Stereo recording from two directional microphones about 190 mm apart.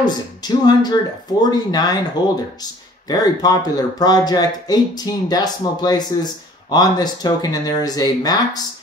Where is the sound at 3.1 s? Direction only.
20° left (ahead or behind).